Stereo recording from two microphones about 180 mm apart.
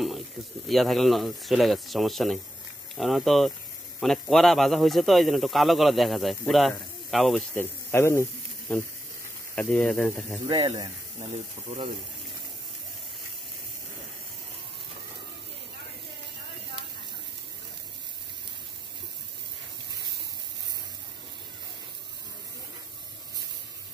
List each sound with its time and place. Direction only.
0.7 s speech: centre (ahead or behind)
7.5 s speech: 15° left (ahead or behind)
9.6 s speech: 5° left (ahead or behind)
10.4 s speech: 25° right (ahead or behind)